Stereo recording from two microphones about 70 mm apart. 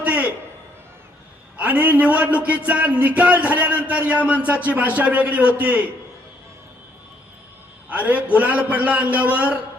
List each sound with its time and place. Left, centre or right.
0.0 s a sound: centre
1.5 s a man's voice: right
7.9 s a man's voice: right